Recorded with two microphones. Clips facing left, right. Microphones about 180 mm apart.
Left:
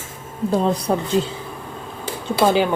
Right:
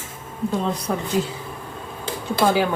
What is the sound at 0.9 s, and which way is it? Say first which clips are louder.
Speech: left 4 dB; 30° left (ahead or behind).